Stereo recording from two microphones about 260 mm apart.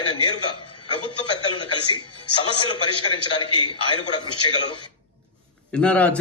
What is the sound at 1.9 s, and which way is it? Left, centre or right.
Speech, centre.